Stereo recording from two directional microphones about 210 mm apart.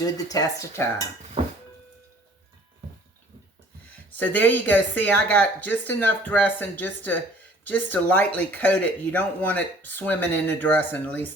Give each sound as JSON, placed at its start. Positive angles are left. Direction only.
{"t": 0.0, "sound": "speech", "side_deg": 15}
{"t": 4.2, "sound": "speech", "side_deg": 10}